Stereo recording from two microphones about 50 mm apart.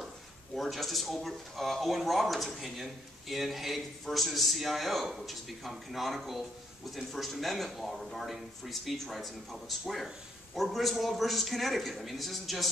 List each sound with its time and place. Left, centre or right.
0.6 s speech: centre